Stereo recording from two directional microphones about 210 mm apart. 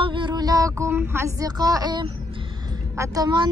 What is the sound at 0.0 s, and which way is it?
A woman's voice, 25° right (ahead or behind).